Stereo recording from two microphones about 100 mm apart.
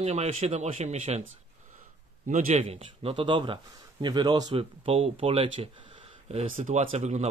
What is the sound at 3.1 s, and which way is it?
Speech, 55° right (ahead or behind).